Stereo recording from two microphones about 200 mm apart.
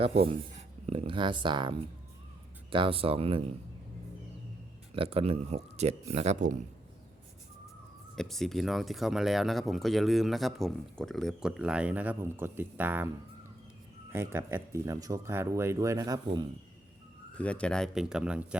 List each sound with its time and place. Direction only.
0.0 s speech: 30° right (ahead or behind)
4.9 s speech: 30° right (ahead or behind)
8.1 s speech: centre (ahead or behind)
14.1 s speech: 10° right (ahead or behind)
17.3 s speech: 5° left (ahead or behind)